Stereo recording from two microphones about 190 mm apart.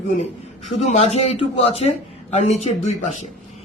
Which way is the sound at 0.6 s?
35° left (ahead or behind).